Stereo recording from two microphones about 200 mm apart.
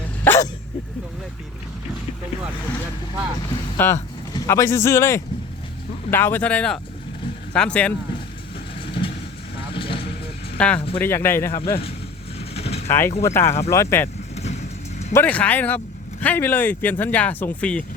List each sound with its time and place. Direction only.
3.5 s speech: 15° left (ahead or behind)
9.7 s vehicle: 25° left (ahead or behind)
10.6 s speech: 5° left (ahead or behind)
12.5 s mechanisms: 30° left (ahead or behind)
12.9 s speech: 10° left (ahead or behind)
14.4 s vehicle: 35° left (ahead or behind)
15.1 s speech: 10° left (ahead or behind)